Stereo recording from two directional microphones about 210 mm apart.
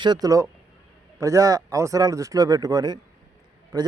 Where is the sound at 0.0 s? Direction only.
20° right (ahead or behind).